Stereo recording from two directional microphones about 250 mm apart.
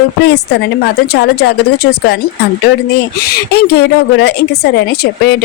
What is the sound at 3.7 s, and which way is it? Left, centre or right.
A woman's voice, left.